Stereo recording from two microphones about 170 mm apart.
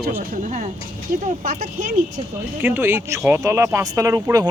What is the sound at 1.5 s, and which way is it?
Speech, 55° right (ahead or behind).